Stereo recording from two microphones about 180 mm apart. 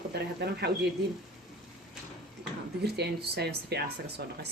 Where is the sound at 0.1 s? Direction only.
65° right (ahead or behind).